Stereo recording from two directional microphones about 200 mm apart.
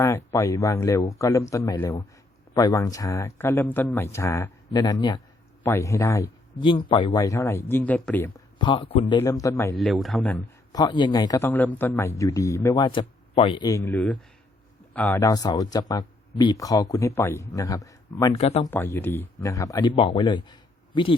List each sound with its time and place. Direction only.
0.0 s a man's voice: 15° left (ahead or behind)
8.5 s speech: 25° left (ahead or behind)
9.2 s a man's voice: 15° left (ahead or behind)
9.7 s speech: centre (ahead or behind)
10.7 s a man's voice: 20° left (ahead or behind)
18.3 s speech: 30° left (ahead or behind)
18.6 s a man's voice: 10° left (ahead or behind)